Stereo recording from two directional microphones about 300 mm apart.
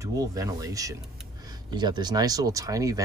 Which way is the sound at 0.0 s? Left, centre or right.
Centre.